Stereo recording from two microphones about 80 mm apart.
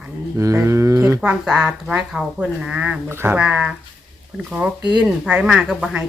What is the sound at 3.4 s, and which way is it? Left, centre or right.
Speech, centre.